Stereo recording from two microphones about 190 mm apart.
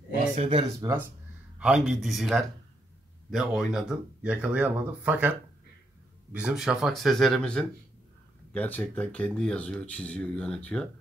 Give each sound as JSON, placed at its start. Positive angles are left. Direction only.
{"t": 0.4, "sound": "speech", "side_deg": -30}
{"t": 1.6, "sound": "speech", "side_deg": 0}
{"t": 6.3, "sound": "speech", "side_deg": -5}